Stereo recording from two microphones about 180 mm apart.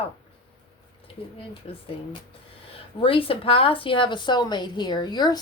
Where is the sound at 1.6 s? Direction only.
30° left (ahead or behind).